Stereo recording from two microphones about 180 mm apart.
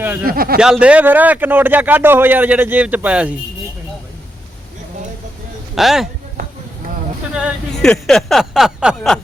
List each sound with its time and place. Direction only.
0.0 s speech: 10° right (ahead or behind)
0.3 s speech: 55° right (ahead or behind)
0.6 s speech: 5° right (ahead or behind)
5.7 s speech: centre (ahead or behind)
7.3 s speech: centre (ahead or behind)